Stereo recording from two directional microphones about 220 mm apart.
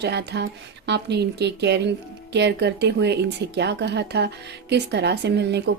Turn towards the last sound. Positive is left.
turn(degrees=-50)  # may be behind; listen again after turning